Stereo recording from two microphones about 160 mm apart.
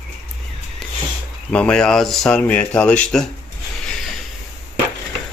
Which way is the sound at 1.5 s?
5° left (ahead or behind).